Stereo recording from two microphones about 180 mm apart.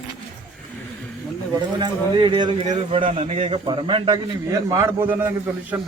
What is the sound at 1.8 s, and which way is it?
A man's voice, 25° right (ahead or behind).